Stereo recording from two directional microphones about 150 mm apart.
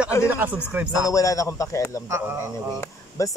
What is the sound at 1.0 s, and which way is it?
Speech, 20° left (ahead or behind).